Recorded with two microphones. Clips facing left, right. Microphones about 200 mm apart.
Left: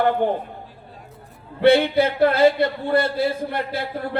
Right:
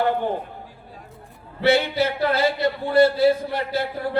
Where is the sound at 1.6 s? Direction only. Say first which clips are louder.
Left 4 dB; 55° left (ahead or behind).